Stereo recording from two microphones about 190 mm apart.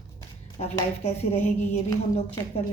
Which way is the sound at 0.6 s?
35° left (ahead or behind).